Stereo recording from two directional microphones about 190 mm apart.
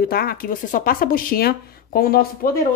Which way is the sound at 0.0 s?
50° left (ahead or behind).